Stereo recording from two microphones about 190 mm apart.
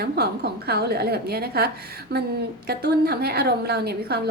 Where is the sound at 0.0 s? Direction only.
55° right (ahead or behind).